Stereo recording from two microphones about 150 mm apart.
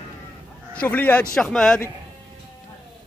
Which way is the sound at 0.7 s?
10° left (ahead or behind).